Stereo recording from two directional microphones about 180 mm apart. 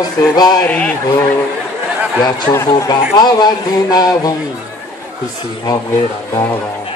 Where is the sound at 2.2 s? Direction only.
20° left (ahead or behind).